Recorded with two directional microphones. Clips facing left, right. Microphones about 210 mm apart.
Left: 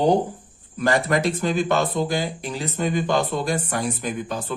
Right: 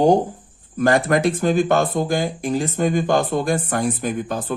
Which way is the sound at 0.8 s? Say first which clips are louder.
Right 4 dB; 50° right (ahead or behind).